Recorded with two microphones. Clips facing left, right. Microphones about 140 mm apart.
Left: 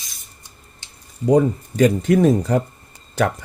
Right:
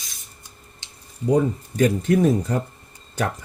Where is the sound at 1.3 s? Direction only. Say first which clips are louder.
Left 4 dB; 90° left.